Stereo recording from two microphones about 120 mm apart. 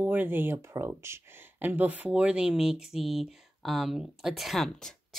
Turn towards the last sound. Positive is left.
turn(degrees=0)  # may be behind; listen again after turning